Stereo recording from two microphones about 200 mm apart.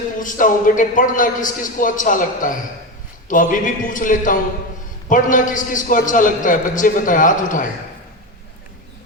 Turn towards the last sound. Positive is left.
turn(degrees=40)  # may be behind; listen again after turning